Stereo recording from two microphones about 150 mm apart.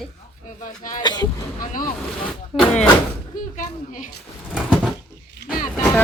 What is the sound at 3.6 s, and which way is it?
Speech, 60° left (ahead or behind).